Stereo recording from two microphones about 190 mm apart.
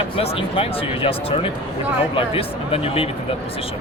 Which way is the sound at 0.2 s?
30° left (ahead or behind).